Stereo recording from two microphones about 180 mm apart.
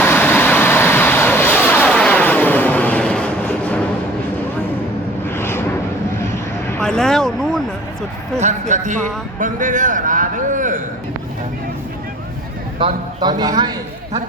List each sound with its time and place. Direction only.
0.0 s vehicle: 10° left (ahead or behind)
5.3 s vehicle: 15° left (ahead or behind)
6.3 s a sound: 15° left (ahead or behind)
6.8 s vehicle: 5° left (ahead or behind)
8.4 s a man's voice: 40° right (ahead or behind)
12.8 s a man's voice: 25° right (ahead or behind)